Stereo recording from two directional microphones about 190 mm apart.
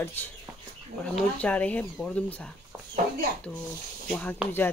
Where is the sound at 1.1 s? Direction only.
5° left (ahead or behind).